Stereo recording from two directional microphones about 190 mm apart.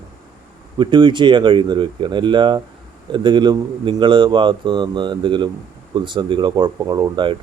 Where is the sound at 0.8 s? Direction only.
25° right (ahead or behind).